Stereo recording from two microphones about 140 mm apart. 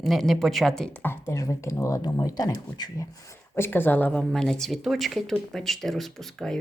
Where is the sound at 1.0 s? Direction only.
20° left (ahead or behind).